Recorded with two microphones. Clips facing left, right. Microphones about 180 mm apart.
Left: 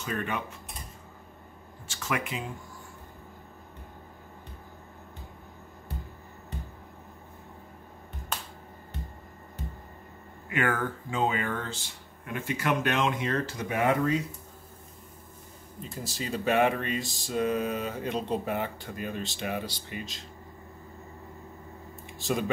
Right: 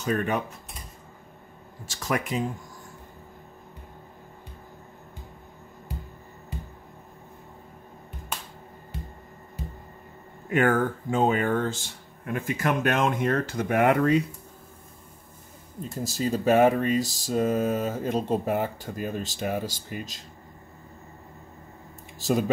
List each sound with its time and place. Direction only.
0.0 s speech: 40° right (ahead or behind)
1.9 s speech: 40° right (ahead or behind)
10.5 s speech: 45° right (ahead or behind); by 14.2 s 65° right (ahead or behind)
15.9 s speech: 45° right (ahead or behind)
22.2 s speech: 40° right (ahead or behind)